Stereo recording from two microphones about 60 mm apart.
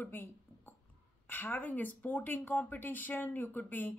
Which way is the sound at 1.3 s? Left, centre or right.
Left.